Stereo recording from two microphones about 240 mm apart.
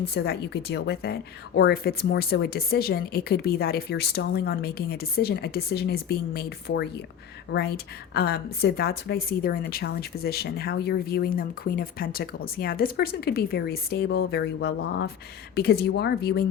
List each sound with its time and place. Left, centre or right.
0.0 s a woman's voice: left